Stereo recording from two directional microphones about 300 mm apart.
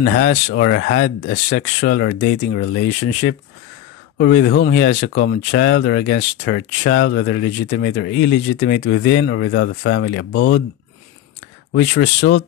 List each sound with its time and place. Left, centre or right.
0.0 s speech: left
11.7 s speech: left